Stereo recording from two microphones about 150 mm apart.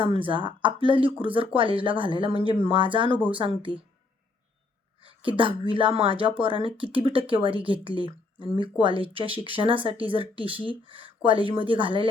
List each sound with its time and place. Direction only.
0.0 s speech: 35° right (ahead or behind)
4.9 s a sound: 35° right (ahead or behind)
5.4 s speech: 35° right (ahead or behind)